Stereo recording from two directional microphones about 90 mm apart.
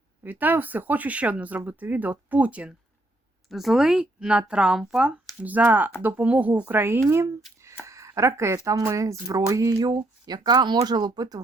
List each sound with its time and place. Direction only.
0.2 s speech: 20° right (ahead or behind)
3.5 s speech: centre (ahead or behind); by 9.9 s 35° right (ahead or behind)
9.9 s speech: 50° right (ahead or behind)